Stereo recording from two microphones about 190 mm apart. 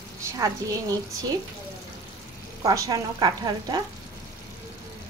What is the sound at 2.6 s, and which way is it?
A woman's voice, 15° right (ahead or behind).